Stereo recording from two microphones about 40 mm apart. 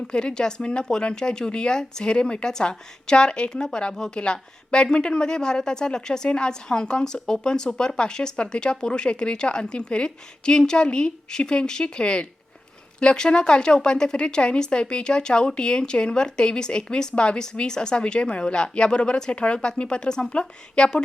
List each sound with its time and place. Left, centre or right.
0.1 s a woman's voice: left